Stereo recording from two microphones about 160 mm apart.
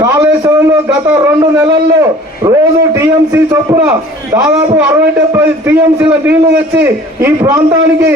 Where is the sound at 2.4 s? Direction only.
20° right (ahead or behind).